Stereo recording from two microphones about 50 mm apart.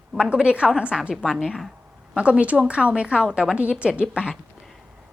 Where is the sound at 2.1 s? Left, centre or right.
Right.